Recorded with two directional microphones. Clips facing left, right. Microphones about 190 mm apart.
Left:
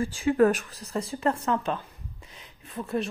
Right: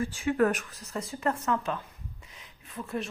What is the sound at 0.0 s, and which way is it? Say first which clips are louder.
A woman's voice: left 4 dB; 30° left (ahead or behind).